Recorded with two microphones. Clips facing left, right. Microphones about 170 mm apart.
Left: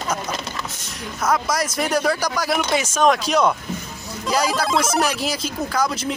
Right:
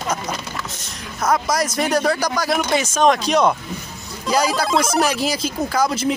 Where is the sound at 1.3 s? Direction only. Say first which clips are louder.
Right 2 dB; 5° left (ahead or behind).